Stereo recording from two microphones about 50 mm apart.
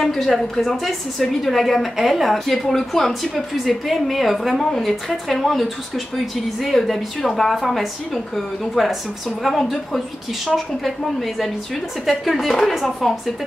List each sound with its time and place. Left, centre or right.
0.0 s a woman's voice: centre
9.4 s a woman's voice: centre
12.1 s a woman's voice: centre